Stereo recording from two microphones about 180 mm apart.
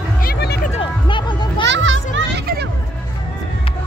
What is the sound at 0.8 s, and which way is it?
Music, 25° left (ahead or behind).